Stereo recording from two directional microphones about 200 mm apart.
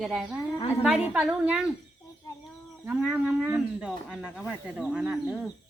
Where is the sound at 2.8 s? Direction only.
5° right (ahead or behind).